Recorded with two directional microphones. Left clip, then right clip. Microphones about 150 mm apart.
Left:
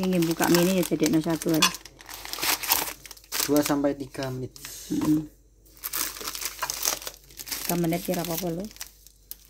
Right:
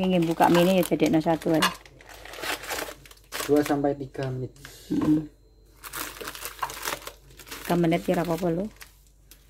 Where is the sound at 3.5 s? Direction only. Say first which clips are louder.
Right 1 dB; 45° left (ahead or behind).